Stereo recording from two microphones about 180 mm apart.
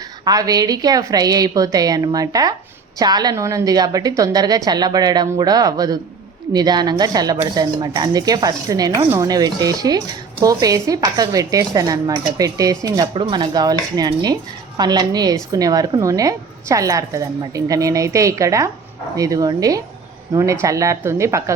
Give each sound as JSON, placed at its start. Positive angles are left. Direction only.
{"t": 0.3, "sound": "a woman's voice", "side_deg": -20}